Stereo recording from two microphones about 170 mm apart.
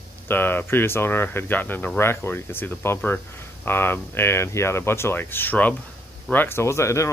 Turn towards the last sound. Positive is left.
turn(degrees=15)  # may be behind; listen again after turning